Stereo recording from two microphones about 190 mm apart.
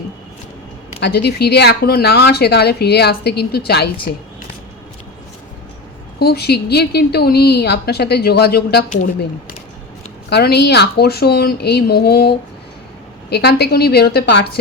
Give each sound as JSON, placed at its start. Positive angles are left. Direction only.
{"t": 0.9, "sound": "speech", "side_deg": 60}
{"t": 6.1, "sound": "speech", "side_deg": 60}
{"t": 10.2, "sound": "speech", "side_deg": 60}